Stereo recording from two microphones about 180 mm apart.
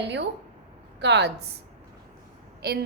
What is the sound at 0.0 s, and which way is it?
A woman's voice, 70° right (ahead or behind).